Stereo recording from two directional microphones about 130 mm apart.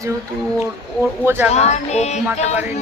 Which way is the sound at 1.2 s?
15° right (ahead or behind).